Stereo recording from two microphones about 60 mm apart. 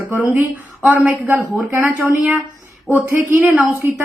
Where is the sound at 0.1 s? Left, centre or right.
Right.